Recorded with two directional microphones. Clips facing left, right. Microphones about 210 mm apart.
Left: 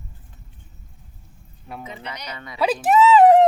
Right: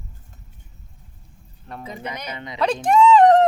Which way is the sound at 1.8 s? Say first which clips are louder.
Right 3 dB; 40° right (ahead or behind).